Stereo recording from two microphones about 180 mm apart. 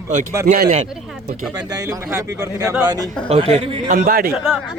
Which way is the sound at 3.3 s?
35° right (ahead or behind).